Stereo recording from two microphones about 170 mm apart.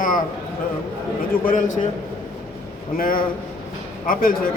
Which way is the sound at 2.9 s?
60° left (ahead or behind).